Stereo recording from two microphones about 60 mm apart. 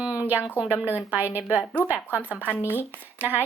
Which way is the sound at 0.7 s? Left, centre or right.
Right.